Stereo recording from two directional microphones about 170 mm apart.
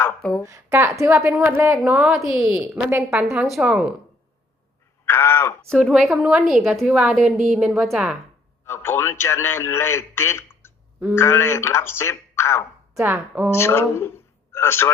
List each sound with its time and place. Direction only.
0.0 s speech: 5° left (ahead or behind)
0.4 s a woman's voice: 15° right (ahead or behind)
5.0 s speech: 15° left (ahead or behind)
5.7 s a woman's voice: centre (ahead or behind)
8.6 s a man's voice: 15° left (ahead or behind)
12.9 s a sound: 15° right (ahead or behind)
13.1 s a woman's voice: 10° right (ahead or behind)
13.5 s a man's voice: 15° left (ahead or behind)